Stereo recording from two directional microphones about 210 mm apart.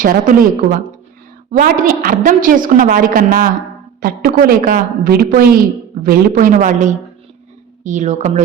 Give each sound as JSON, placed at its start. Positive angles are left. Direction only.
{"t": 0.0, "sound": "a woman's voice", "side_deg": -40}